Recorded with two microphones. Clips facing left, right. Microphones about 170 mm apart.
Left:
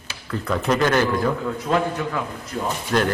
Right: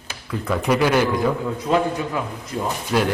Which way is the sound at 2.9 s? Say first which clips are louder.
Even; 10° right (ahead or behind).